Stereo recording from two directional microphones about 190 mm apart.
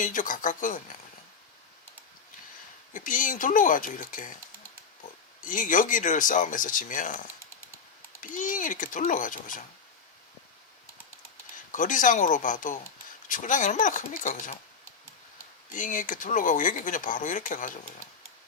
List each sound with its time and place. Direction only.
0.0 s speech: 45° left (ahead or behind)
2.9 s speech: 45° left (ahead or behind)
5.4 s speech: 45° left (ahead or behind)
8.2 s speech: 45° left (ahead or behind)
11.7 s speech: 45° left (ahead or behind)
15.7 s speech: 45° left (ahead or behind)